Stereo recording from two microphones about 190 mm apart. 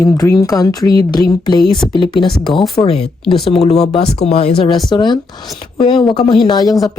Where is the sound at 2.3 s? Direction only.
Centre (ahead or behind).